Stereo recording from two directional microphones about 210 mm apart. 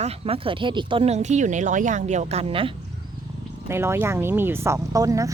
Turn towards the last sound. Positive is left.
turn(degrees=-15)  # may be behind; listen again after turning